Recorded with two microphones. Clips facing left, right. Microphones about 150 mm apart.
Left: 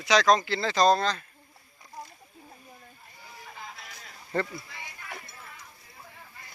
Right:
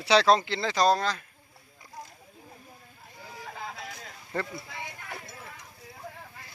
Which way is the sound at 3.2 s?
90° right.